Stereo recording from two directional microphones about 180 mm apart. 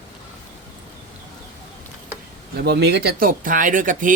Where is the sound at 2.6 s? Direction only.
65° right (ahead or behind); by 4.1 s 45° right (ahead or behind).